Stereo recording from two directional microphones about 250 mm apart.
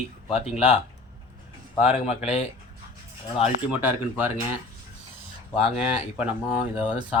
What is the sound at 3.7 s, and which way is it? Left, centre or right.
Speech, centre.